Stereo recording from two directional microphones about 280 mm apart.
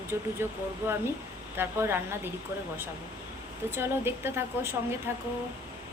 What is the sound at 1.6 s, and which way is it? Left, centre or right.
Speech, centre.